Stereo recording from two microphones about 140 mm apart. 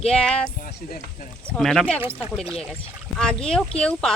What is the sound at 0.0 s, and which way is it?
Speech, 5° left (ahead or behind).